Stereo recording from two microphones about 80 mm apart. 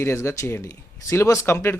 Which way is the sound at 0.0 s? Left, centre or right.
Left.